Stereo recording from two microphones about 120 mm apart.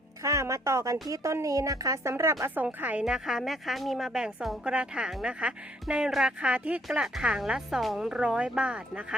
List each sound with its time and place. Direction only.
0.2 s speech: 30° right (ahead or behind)
2.6 s a woman's voice: 10° right (ahead or behind)